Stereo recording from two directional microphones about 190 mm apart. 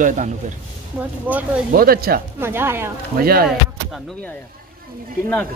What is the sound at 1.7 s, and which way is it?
Speech, 50° right (ahead or behind).